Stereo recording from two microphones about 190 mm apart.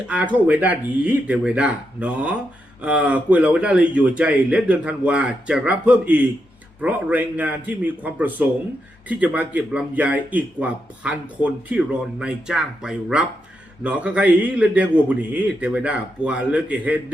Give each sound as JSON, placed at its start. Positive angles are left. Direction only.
{"t": 0.1, "sound": "speech", "side_deg": -5}